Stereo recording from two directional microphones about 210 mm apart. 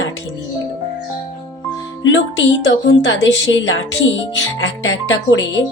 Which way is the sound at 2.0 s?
65° left (ahead or behind).